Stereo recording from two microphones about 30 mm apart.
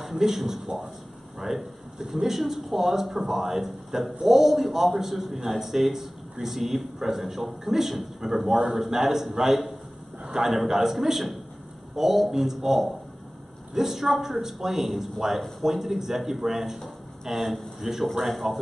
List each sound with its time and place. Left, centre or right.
0.0 s speech: centre
10.2 s a sound: right
10.5 s speech: centre